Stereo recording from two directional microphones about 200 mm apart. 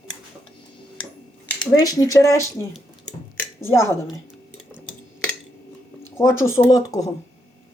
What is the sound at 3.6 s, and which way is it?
Speech, 15° left (ahead or behind).